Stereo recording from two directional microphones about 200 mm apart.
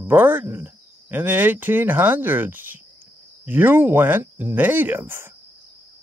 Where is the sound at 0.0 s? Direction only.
10° right (ahead or behind).